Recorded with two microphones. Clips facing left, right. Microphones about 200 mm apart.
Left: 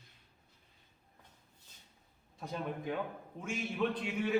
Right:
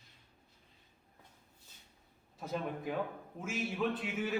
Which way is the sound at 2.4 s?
Centre (ahead or behind).